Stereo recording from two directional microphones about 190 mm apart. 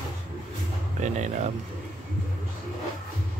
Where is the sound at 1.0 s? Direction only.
40° right (ahead or behind).